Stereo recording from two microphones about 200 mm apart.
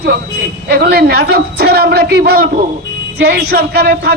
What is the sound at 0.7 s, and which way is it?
A man's voice, 50° right (ahead or behind).